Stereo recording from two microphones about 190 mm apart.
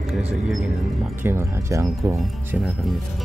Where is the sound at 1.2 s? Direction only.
15° right (ahead or behind).